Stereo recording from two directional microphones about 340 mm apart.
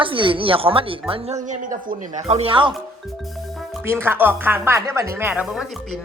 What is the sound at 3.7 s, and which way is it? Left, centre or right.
Speech, centre.